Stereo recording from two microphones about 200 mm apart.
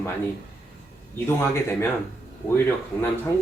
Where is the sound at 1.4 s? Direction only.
10° left (ahead or behind).